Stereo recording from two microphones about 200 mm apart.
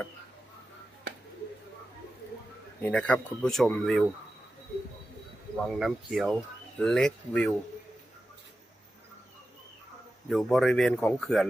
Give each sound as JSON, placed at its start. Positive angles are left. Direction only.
{"t": 2.8, "sound": "speech", "side_deg": 5}
{"t": 5.6, "sound": "speech", "side_deg": 0}
{"t": 10.2, "sound": "speech", "side_deg": 0}